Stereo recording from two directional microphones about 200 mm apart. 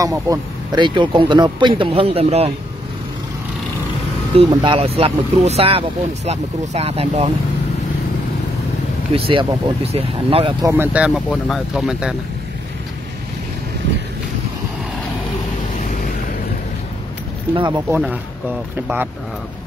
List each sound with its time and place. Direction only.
0.0 s speech: 15° right (ahead or behind)
4.4 s speech: 25° right (ahead or behind)
9.1 s speech: 25° right (ahead or behind)
10.6 s speech: 10° right (ahead or behind)
17.6 s speech: 20° right (ahead or behind)
17.9 s speech: 5° right (ahead or behind)